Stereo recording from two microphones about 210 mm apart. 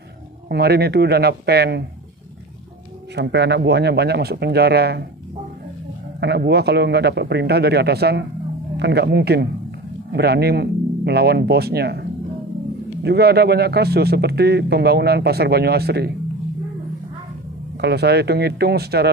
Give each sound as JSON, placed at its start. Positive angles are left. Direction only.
{"t": 0.5, "sound": "speech", "side_deg": -50}
{"t": 3.2, "sound": "speech", "side_deg": -55}
{"t": 6.2, "sound": "speech", "side_deg": -50}
{"t": 17.7, "sound": "speech", "side_deg": -50}